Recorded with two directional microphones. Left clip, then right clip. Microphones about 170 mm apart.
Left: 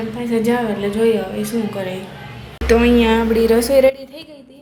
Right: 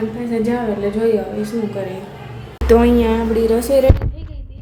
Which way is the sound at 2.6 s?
25° right (ahead or behind).